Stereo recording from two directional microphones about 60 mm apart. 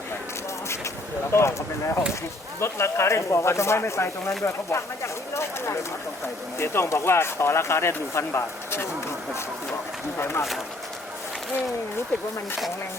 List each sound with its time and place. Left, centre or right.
1.3 s speech: left
10.2 s speech: left